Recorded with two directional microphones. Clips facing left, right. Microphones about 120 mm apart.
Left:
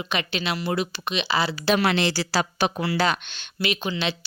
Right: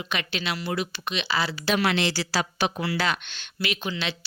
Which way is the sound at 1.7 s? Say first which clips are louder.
Left 2 dB; 40° left (ahead or behind).